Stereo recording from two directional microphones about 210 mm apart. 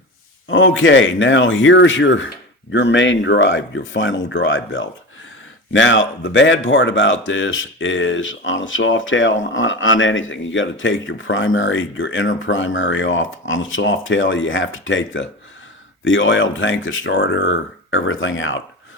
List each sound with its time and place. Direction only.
0.4 s speech: 65° left (ahead or behind)